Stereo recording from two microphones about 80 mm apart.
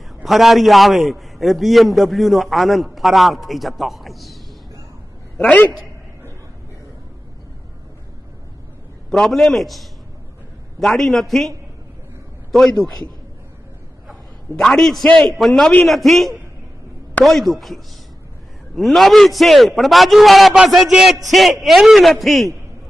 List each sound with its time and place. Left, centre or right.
0.2 s a man's voice: centre
5.4 s a man's voice: centre
9.1 s a man's voice: centre
14.6 s a man's voice: centre